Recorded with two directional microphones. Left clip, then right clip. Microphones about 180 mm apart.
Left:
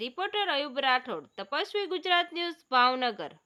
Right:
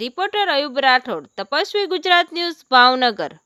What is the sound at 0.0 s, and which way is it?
Speech, 45° right (ahead or behind).